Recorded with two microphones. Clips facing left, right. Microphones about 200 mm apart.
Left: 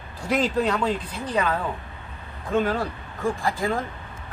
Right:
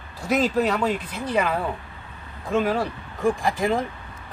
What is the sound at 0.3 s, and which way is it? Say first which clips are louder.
Speech: right 1 dB; 5° right (ahead or behind).